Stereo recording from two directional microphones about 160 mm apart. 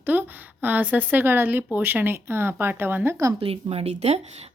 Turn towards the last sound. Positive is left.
turn(degrees=-40)  # may be behind; listen again after turning